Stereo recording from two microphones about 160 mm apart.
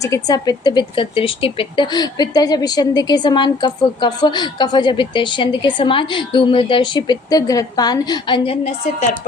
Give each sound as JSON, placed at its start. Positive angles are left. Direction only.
{"t": 0.0, "sound": "speech", "side_deg": 20}